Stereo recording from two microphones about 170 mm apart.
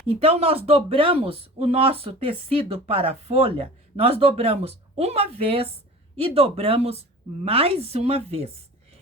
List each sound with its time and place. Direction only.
0.1 s speech: 35° right (ahead or behind)